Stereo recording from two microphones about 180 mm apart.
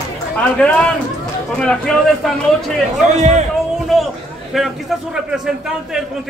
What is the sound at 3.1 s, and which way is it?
Speech, 40° right (ahead or behind).